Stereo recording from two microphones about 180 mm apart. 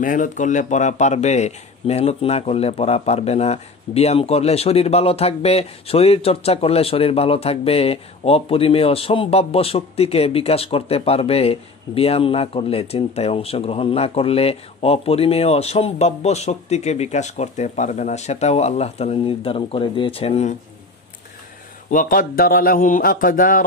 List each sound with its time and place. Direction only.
0.0 s speech: 45° left (ahead or behind)
21.9 s a man's voice: 50° left (ahead or behind)